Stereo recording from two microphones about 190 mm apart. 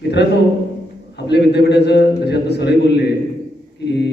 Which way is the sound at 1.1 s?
60° left (ahead or behind).